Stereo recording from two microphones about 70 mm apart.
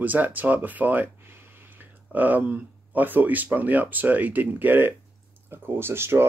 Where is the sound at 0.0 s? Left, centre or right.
Right.